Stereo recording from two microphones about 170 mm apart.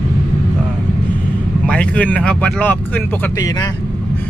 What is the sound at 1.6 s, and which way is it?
Speech, 5° left (ahead or behind).